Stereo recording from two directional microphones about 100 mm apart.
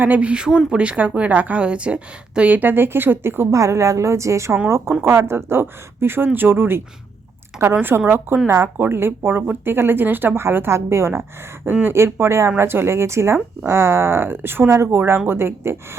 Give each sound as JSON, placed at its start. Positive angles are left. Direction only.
{"t": 0.0, "sound": "a woman's voice", "side_deg": -15}